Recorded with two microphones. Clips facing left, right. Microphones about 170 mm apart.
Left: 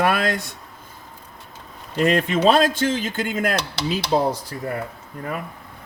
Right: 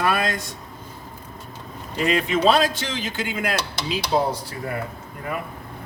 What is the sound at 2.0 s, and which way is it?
Speech, 45° left (ahead or behind).